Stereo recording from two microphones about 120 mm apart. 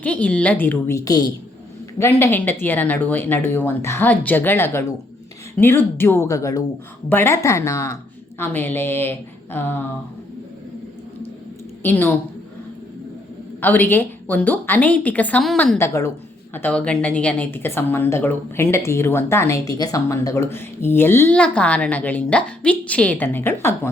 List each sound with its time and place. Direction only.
0.0 s speech: 10° left (ahead or behind)
0.9 s a woman's voice: 30° left (ahead or behind)
2.0 s a woman's voice: 20° left (ahead or behind)
11.8 s speech: 15° left (ahead or behind)
13.6 s speech: 15° left (ahead or behind)
15.8 s a woman's voice: 25° left (ahead or behind)
16.6 s speech: 10° left (ahead or behind)